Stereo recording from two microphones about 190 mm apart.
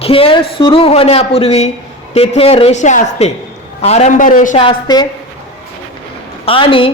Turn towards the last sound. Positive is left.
turn(degrees=25)  # may be behind; listen again after turning